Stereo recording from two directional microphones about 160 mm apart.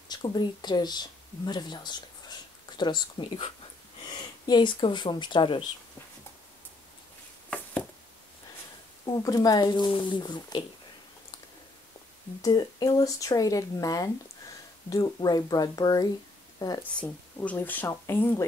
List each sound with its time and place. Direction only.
0.1 s speech: 25° left (ahead or behind)
7.4 s a sound: 10° left (ahead or behind)
9.0 s speech: 25° left (ahead or behind)
12.4 s speech: 25° left (ahead or behind)
16.9 s speech: 10° left (ahead or behind)